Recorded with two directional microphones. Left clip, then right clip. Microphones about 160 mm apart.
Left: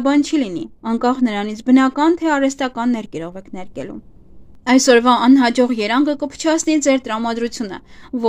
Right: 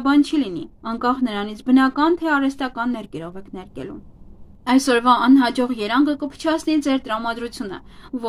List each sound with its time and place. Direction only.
0.0 s speech: 45° left (ahead or behind)